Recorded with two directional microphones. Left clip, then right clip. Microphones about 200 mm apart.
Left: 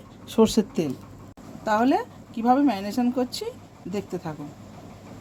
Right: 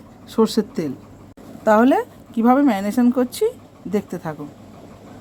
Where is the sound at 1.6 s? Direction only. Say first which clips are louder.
Right 7 dB; 30° right (ahead or behind).